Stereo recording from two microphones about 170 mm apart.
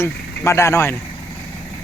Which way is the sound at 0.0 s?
15° left (ahead or behind).